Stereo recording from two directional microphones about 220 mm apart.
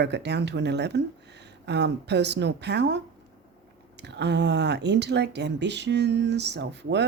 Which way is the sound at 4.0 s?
50° right (ahead or behind).